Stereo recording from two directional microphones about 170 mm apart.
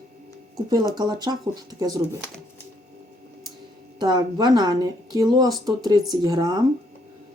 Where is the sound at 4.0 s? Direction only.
25° right (ahead or behind).